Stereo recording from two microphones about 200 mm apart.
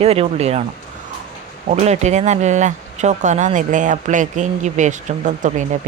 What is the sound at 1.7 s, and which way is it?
Speech, 35° right (ahead or behind).